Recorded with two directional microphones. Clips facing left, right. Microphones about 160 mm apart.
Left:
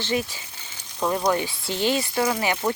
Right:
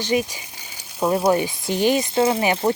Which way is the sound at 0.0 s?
15° right (ahead or behind).